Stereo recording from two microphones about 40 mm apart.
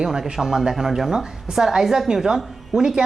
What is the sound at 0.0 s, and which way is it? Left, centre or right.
A woman's voice, centre.